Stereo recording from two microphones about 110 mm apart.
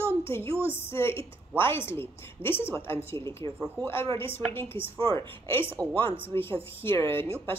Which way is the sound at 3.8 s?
40° right (ahead or behind).